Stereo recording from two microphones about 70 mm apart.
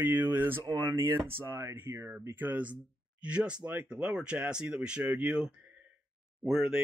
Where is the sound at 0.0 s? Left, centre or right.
Right.